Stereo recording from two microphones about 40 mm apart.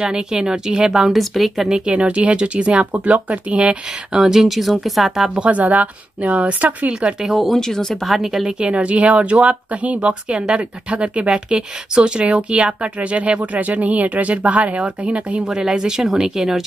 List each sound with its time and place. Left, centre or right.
0.0 s speech: centre
1.1 s speech: centre
1.7 s speech: right
4.2 s speech: centre
5.4 s speech: right
6.9 s speech: right
7.2 s speech: centre
7.5 s speech: centre
7.9 s speech: centre
8.5 s speech: right
15.4 s speech: centre